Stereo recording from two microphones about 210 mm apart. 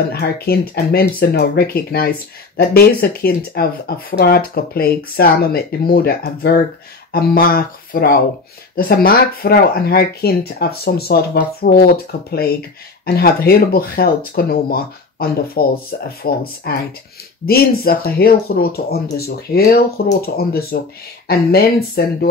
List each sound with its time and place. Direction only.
0.1 s speech: 50° left (ahead or behind)